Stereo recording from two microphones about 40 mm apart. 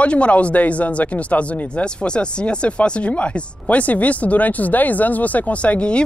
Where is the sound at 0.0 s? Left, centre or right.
Left.